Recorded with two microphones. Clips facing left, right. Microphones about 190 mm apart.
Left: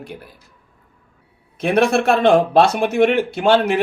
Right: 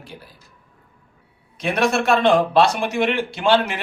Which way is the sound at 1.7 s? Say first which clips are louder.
Left 3 dB; 60° left (ahead or behind).